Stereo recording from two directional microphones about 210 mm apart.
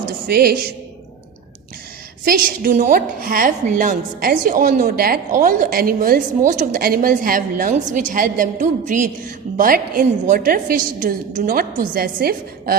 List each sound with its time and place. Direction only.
0.3 s a woman's voice: 45° right (ahead or behind)
2.2 s a woman's voice: 45° right (ahead or behind)